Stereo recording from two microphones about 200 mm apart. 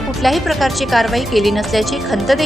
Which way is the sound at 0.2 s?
Centre (ahead or behind).